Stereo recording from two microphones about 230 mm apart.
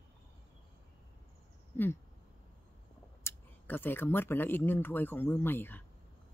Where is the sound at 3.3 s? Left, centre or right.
Centre.